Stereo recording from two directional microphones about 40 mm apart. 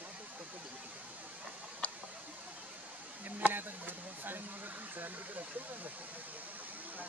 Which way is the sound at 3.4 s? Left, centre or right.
Right.